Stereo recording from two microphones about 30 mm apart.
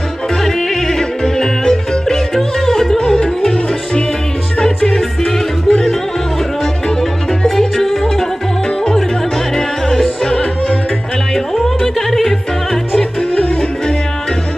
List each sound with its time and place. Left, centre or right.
0.4 s music: centre
4.8 s music: centre
7.4 s music: centre
7.8 s music: centre
9.6 s music: centre
13.3 s music: left